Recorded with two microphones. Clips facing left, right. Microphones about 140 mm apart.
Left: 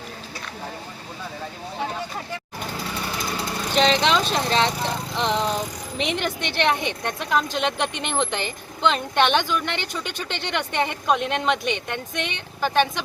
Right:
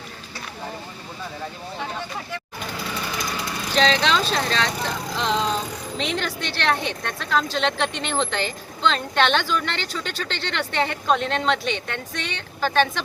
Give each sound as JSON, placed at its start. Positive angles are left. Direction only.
{"t": 3.8, "sound": "speech", "side_deg": 20}